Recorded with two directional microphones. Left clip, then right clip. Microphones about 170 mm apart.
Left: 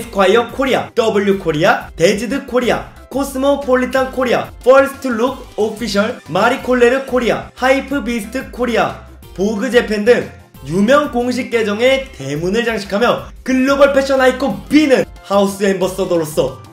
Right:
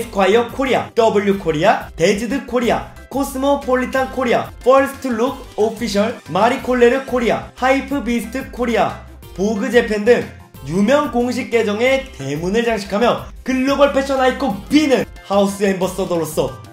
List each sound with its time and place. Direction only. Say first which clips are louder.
0.0 s speech: left 2 dB; 15° right (ahead or behind)